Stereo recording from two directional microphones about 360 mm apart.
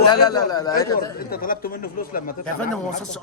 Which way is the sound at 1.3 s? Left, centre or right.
Left.